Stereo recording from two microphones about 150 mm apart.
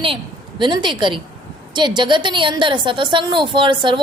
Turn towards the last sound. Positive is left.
turn(degrees=-35)  # may be behind; listen again after turning